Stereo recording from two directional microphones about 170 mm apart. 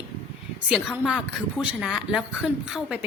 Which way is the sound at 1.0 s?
5° right (ahead or behind).